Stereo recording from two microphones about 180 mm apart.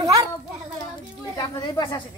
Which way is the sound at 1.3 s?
25° left (ahead or behind).